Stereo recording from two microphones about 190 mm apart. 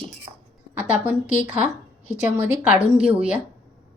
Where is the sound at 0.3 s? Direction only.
30° right (ahead or behind).